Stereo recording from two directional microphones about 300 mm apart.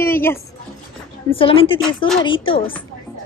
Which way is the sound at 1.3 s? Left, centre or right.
Centre.